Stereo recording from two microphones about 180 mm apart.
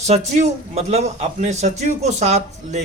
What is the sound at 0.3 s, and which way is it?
A man's voice, 40° right (ahead or behind).